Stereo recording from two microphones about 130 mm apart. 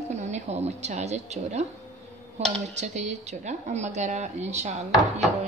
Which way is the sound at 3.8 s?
60° right (ahead or behind).